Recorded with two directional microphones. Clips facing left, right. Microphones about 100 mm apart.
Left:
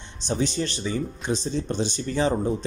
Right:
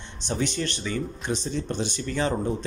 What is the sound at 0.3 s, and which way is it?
A man's voice, 25° left (ahead or behind).